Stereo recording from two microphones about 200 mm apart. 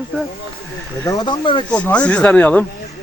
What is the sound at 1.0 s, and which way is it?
Speech, 20° left (ahead or behind).